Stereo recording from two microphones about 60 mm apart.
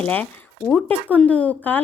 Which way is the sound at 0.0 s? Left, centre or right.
Left.